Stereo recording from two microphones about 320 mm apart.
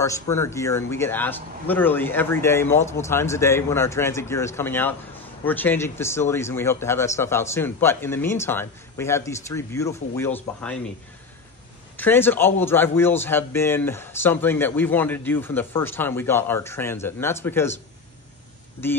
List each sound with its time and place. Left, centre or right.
0.0 s a man's voice: centre
12.0 s a man's voice: centre
18.8 s a man's voice: centre